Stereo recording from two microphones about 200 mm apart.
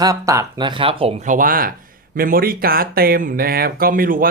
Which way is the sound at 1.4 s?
45° right (ahead or behind).